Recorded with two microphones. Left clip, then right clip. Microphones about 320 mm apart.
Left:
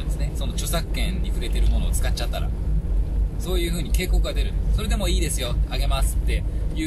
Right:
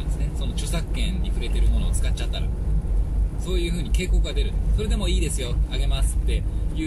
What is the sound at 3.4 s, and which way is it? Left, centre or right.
Speech, left.